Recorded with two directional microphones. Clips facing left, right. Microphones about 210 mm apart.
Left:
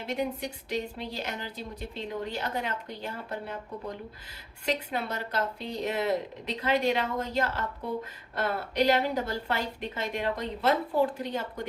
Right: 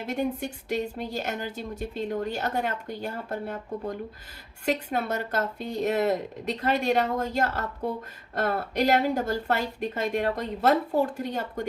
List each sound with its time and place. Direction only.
0.1 s a woman's voice: 50° right (ahead or behind)